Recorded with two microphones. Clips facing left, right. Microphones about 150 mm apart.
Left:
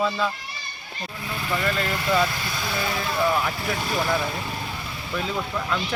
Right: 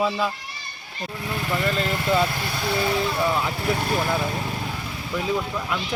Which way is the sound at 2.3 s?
60° right (ahead or behind).